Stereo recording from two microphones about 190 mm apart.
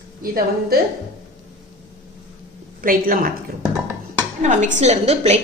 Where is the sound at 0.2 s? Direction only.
50° right (ahead or behind).